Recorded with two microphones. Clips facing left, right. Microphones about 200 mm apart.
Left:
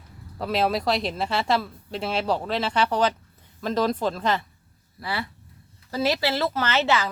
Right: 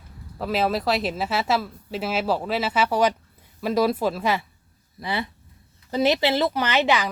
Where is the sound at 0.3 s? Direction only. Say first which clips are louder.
Even; centre (ahead or behind).